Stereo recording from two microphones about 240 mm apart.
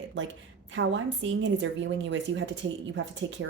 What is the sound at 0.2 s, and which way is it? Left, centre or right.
A woman's voice, right.